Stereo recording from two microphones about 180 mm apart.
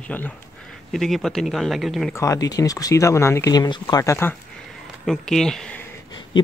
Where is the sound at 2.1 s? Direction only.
15° left (ahead or behind).